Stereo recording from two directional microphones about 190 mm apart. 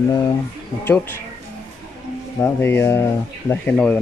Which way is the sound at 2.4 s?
10° left (ahead or behind).